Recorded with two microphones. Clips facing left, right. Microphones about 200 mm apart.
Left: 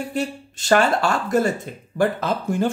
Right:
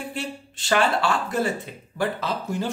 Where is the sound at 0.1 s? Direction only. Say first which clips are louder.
Left 6 dB; 45° left (ahead or behind).